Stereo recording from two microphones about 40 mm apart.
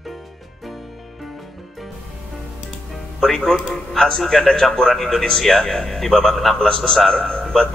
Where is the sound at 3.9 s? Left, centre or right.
Centre.